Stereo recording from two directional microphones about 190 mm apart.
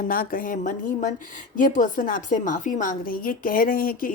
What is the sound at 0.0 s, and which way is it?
Speech, 50° left (ahead or behind).